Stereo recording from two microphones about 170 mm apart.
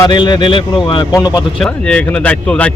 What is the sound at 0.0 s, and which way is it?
Speech, 25° left (ahead or behind).